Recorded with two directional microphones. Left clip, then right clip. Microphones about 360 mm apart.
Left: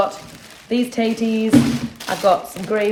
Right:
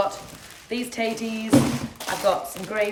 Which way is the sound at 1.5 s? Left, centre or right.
Centre.